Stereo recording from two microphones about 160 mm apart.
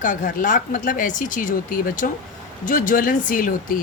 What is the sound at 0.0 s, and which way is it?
Speech, 55° left (ahead or behind).